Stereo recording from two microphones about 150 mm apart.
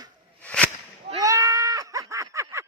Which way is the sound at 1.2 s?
20° right (ahead or behind).